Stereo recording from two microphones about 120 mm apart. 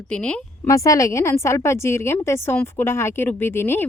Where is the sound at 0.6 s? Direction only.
25° left (ahead or behind).